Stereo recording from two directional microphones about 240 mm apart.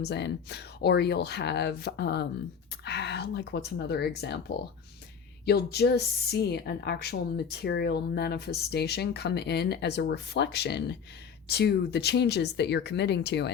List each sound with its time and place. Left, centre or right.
0.0 s a woman's voice: left